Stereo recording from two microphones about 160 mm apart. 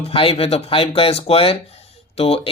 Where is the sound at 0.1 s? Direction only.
35° left (ahead or behind).